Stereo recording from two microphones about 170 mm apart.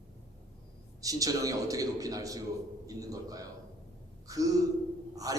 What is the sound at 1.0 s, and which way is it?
A man's voice, 20° right (ahead or behind).